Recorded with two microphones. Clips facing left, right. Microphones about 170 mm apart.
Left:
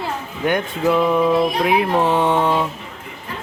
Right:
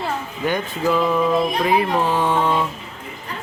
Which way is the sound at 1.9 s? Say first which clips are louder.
Left 3 dB; 20° left (ahead or behind).